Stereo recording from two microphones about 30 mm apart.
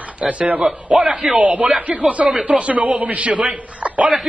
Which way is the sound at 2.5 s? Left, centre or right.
Right.